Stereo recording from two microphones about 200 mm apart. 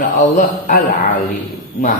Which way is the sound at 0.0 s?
40° left (ahead or behind).